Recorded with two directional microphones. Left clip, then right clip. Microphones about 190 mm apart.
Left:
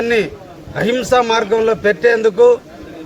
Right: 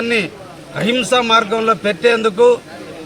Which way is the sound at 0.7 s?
20° left (ahead or behind).